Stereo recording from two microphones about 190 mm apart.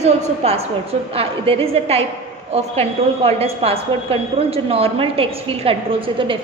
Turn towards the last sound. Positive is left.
turn(degrees=-25)  # may be behind; listen again after turning